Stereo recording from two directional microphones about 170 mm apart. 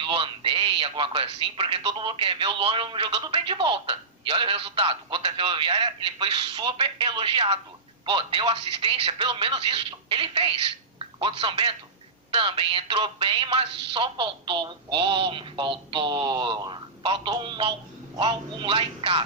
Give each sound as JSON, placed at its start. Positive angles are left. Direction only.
{"t": 0.0, "sound": "speech", "side_deg": -30}